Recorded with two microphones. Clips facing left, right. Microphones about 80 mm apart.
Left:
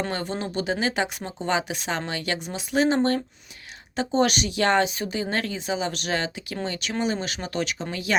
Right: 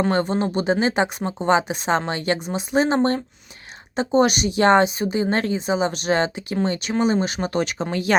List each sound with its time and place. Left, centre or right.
0.1 s speech: right
7.9 s speech: right